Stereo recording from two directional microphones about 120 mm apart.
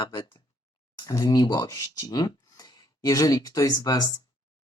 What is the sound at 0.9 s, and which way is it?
Speech, 30° left (ahead or behind).